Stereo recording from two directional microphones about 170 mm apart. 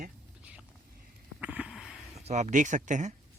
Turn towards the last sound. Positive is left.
turn(degrees=-45)  # may be behind; listen again after turning